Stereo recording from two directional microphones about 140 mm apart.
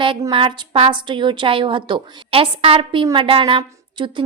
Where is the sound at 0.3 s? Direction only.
40° right (ahead or behind).